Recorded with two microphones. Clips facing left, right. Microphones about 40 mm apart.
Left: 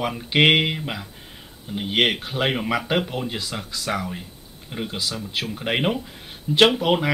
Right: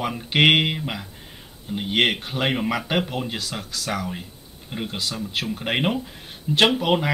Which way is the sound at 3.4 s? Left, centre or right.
Centre.